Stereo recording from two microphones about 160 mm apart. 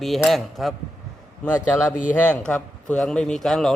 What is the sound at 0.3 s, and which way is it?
Speech, centre (ahead or behind).